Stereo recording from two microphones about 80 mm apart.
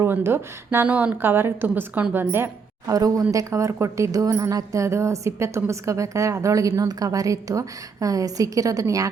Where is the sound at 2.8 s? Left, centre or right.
Right.